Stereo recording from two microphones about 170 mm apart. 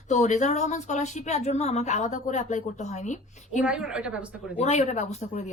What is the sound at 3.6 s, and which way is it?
Speech, 5° right (ahead or behind).